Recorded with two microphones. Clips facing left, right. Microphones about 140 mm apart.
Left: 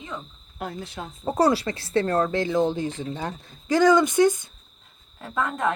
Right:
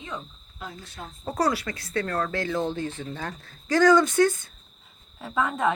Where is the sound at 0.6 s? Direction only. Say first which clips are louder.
Left 7 dB; 60° left (ahead or behind).